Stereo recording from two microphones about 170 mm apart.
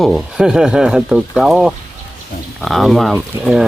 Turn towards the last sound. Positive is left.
turn(degrees=-5)  # may be behind; listen again after turning